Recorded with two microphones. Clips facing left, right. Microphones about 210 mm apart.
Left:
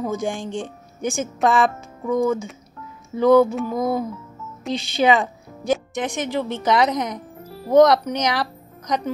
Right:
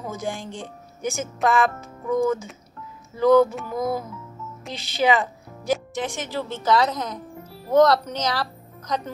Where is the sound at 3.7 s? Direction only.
20° left (ahead or behind).